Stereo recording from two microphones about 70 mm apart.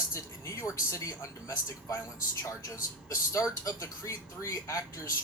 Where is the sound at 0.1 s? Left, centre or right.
Left.